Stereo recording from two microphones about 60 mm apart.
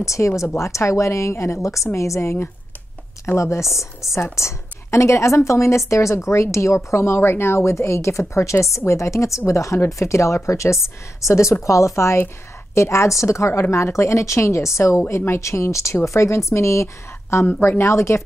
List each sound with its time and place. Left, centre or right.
0.0 s a woman's voice: left
3.3 s a woman's voice: left
3.6 s chopping: centre
4.1 s a woman's voice: left
7.2 s a woman's voice: left
17.5 s a woman's voice: left